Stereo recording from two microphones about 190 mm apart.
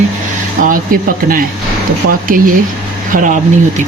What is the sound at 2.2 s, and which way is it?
Speech, 45° right (ahead or behind).